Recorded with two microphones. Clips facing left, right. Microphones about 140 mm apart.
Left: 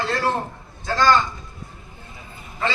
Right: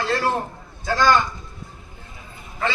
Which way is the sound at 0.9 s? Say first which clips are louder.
Even; 15° right (ahead or behind).